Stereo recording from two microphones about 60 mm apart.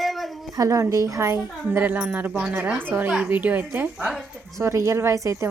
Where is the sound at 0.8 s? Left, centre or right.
Right.